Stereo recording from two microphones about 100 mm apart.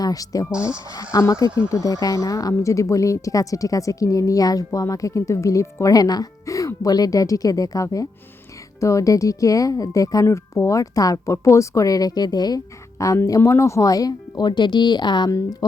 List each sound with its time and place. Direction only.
0.0 s speech: 35° left (ahead or behind)